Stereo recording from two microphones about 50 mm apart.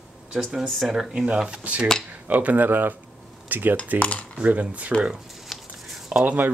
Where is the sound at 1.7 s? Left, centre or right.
Right.